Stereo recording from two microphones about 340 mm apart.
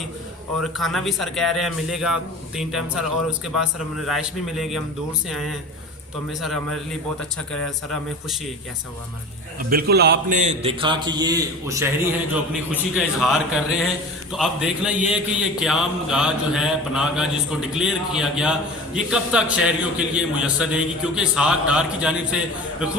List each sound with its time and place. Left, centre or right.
0.8 s a man's voice: centre
9.6 s a man's voice: right; by 11.9 s centre
12.9 s a man's voice: centre